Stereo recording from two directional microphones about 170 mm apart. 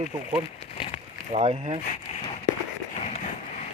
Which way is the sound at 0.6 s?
35° left (ahead or behind).